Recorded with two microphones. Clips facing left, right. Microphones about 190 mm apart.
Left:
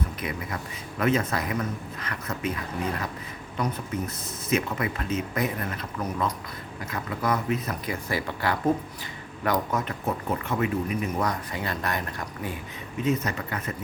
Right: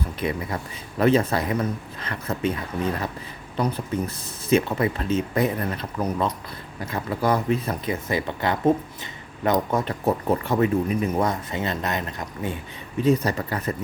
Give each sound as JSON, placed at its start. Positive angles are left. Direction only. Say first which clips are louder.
{"t": 0.2, "sound": "speech", "louder": "right 5 dB", "side_deg": -30}
{"t": 3.6, "sound": "speech", "louder": "right 4 dB", "side_deg": -30}
{"t": 13.0, "sound": "speech", "louder": "right 6 dB", "side_deg": -35}